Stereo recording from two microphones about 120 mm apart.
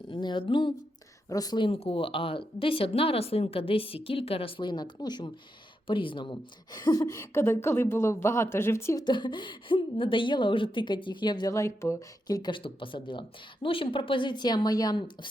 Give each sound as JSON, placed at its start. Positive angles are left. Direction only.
{"t": 0.1, "sound": "speech", "side_deg": 40}
{"t": 1.3, "sound": "speech", "side_deg": 30}
{"t": 1.7, "sound": "a woman's voice", "side_deg": 55}
{"t": 9.0, "sound": "speech", "side_deg": 40}
{"t": 11.5, "sound": "speech", "side_deg": 25}